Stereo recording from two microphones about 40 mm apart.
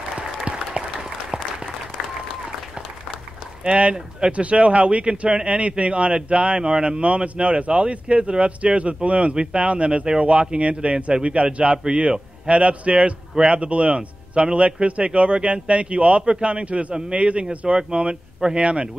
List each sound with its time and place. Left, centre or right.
0.1 s applause: right
3.6 s a man's voice: right